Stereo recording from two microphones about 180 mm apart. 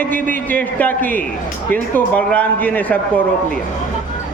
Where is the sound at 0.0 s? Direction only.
10° left (ahead or behind).